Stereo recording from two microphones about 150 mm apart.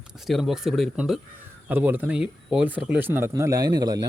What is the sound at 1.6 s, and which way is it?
Speech, 10° right (ahead or behind).